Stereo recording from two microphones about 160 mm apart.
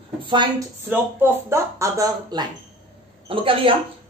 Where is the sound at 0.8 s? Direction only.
15° right (ahead or behind).